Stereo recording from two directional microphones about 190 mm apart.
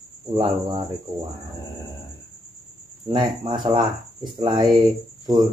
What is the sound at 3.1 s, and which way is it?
Speech, 25° right (ahead or behind).